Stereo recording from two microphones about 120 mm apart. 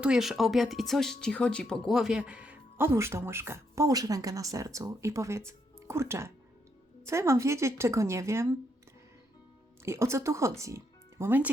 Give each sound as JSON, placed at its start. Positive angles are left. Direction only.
{"t": 0.0, "sound": "speech", "side_deg": -5}
{"t": 9.8, "sound": "speech", "side_deg": -25}